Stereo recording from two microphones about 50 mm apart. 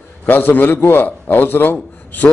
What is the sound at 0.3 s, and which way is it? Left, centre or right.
Speech, left.